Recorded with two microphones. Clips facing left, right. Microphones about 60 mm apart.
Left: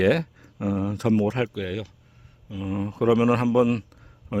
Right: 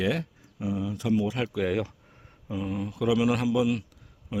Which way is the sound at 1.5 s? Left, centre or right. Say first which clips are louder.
Right 3 dB; right.